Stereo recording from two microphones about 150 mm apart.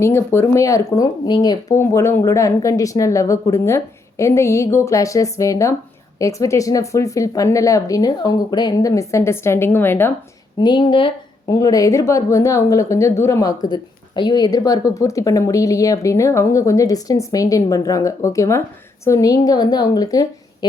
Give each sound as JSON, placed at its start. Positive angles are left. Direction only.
{"t": 0.0, "sound": "a woman's voice", "side_deg": 15}
{"t": 10.6, "sound": "a woman's voice", "side_deg": 30}